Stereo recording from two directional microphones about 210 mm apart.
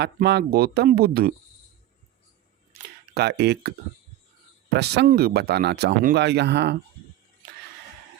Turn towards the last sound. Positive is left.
turn(degrees=-55)  # may be behind; listen again after turning